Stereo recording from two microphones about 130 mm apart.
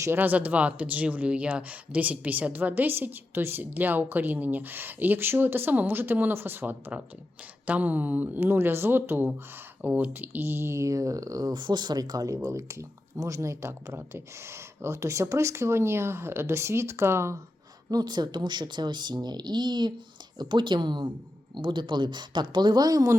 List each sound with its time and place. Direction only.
0.0 s speech: 15° right (ahead or behind)
17.9 s speech: 30° right (ahead or behind)